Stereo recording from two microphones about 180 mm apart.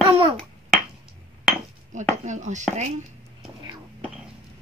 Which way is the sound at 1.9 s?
40° right (ahead or behind).